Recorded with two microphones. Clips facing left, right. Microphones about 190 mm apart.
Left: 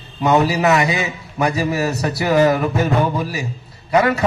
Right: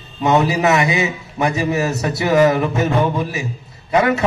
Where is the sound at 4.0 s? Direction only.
35° left (ahead or behind).